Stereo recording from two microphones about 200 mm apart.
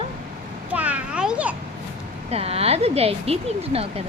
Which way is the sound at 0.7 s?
5° right (ahead or behind).